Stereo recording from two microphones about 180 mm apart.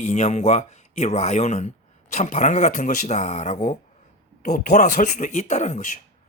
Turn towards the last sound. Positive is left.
turn(degrees=40)  # may be behind; listen again after turning